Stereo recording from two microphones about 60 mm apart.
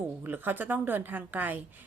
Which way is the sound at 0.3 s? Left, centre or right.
Right.